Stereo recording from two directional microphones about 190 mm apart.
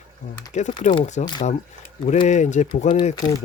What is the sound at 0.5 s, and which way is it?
Speech, 40° left (ahead or behind).